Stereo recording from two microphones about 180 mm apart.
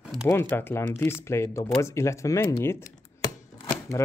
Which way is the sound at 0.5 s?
10° left (ahead or behind).